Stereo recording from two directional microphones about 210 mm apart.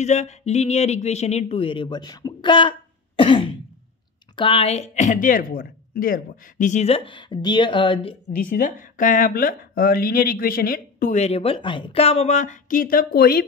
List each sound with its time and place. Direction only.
0.0 s speech: 35° left (ahead or behind)
3.2 s throat clearing: 25° left (ahead or behind)
4.4 s speech: 25° left (ahead or behind)
8.4 s speech: 40° left (ahead or behind)